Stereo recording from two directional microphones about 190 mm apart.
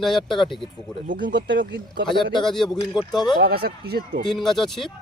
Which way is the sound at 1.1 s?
45° right (ahead or behind).